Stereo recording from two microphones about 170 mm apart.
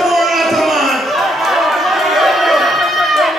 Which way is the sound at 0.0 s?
Centre (ahead or behind).